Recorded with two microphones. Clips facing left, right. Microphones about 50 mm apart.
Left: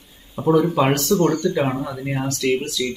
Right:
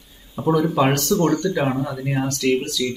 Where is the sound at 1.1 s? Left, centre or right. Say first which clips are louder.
Left 1 dB; right.